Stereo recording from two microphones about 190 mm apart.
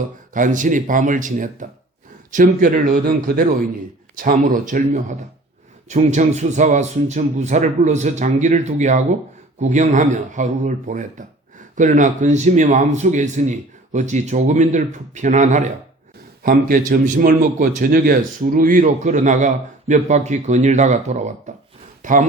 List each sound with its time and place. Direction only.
0.3 s a man's voice: 45° right (ahead or behind)